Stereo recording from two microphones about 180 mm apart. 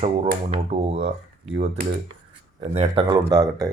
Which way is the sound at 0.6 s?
35° right (ahead or behind).